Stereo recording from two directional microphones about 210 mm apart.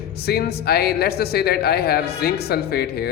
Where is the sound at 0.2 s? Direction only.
50° left (ahead or behind).